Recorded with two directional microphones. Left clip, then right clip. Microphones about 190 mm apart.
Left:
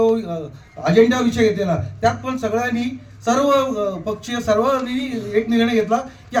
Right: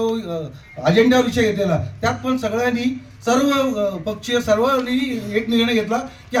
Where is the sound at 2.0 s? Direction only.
10° left (ahead or behind).